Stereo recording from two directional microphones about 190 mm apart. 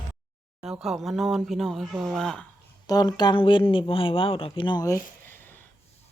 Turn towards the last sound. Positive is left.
turn(degrees=20)  # may be behind; listen again after turning